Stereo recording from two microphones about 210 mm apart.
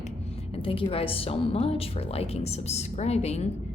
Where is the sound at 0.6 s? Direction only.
25° left (ahead or behind).